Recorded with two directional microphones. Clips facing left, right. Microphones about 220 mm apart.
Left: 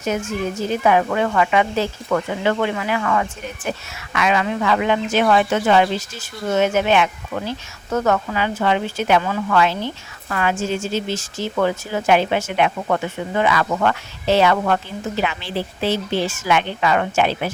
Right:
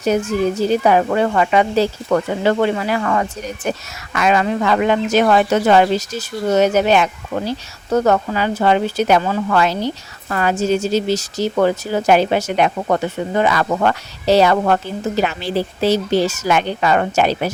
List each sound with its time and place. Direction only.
0.0 s speech: 35° right (ahead or behind)